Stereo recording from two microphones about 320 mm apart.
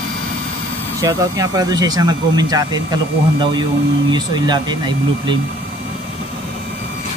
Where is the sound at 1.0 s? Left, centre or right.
Centre.